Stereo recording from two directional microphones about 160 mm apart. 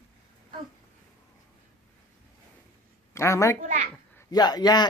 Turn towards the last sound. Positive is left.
turn(degrees=25)  # may be behind; listen again after turning